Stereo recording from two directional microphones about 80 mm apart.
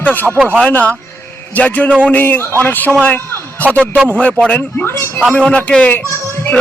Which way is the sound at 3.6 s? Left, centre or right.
Left.